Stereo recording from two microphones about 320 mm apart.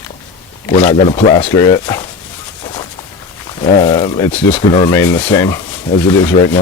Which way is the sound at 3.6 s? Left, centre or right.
Centre.